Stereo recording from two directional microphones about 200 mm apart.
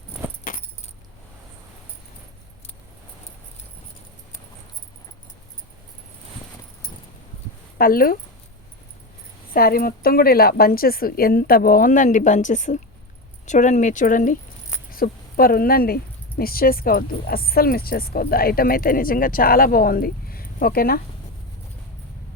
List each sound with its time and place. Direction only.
0.5 s keys jangling: 45° left (ahead or behind)
7.8 s speech: 45° left (ahead or behind)
9.5 s speech: 50° left (ahead or behind)